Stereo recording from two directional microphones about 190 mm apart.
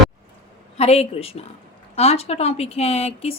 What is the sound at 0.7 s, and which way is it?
A woman's voice, 35° left (ahead or behind).